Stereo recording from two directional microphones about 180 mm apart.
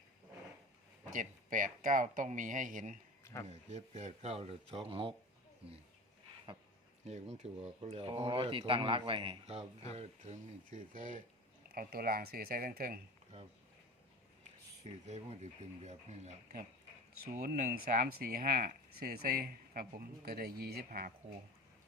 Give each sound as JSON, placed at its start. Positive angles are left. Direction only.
{"t": 1.1, "sound": "speech", "side_deg": -45}
{"t": 6.5, "sound": "speech", "side_deg": -25}
{"t": 7.0, "sound": "speech", "side_deg": -40}
{"t": 15.0, "sound": "speech", "side_deg": -40}
{"t": 17.4, "sound": "speech", "side_deg": -50}